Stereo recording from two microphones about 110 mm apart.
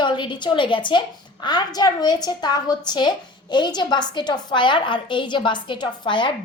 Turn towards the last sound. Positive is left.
turn(degrees=45)  # may be behind; listen again after turning